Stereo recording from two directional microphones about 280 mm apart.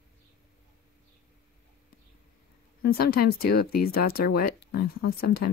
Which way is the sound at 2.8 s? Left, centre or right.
Left.